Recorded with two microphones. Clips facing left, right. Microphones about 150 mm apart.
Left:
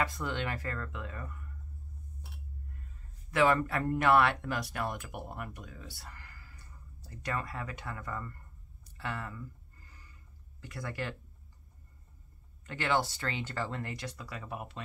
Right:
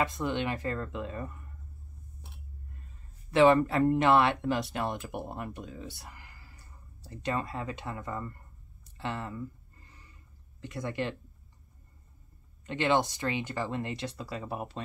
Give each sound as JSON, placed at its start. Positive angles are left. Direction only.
{"t": 0.0, "sound": "speech", "side_deg": -20}
{"t": 3.3, "sound": "speech", "side_deg": -25}
{"t": 8.9, "sound": "a sound", "side_deg": -25}
{"t": 10.6, "sound": "speech", "side_deg": -20}
{"t": 12.6, "sound": "speech", "side_deg": -20}